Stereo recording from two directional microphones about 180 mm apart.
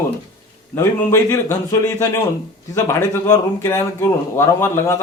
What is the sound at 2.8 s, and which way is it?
A man's voice, 15° left (ahead or behind).